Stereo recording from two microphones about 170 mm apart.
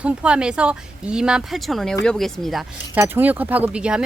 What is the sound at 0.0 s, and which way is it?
Speech, 5° right (ahead or behind).